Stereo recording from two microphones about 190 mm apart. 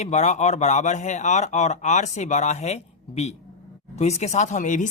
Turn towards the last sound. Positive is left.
turn(degrees=40)  # may be behind; listen again after turning